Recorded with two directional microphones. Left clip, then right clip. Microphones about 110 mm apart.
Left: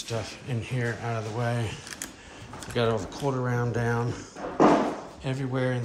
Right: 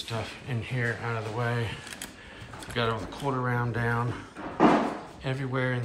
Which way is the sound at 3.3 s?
20° left (ahead or behind).